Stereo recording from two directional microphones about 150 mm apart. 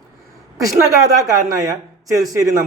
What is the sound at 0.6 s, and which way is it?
A man's voice, 20° right (ahead or behind).